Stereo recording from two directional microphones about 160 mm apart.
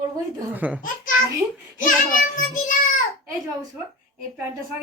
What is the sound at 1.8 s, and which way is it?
Child singing, 55° left (ahead or behind).